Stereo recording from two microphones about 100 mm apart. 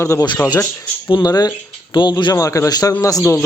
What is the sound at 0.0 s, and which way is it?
Speech, 30° left (ahead or behind).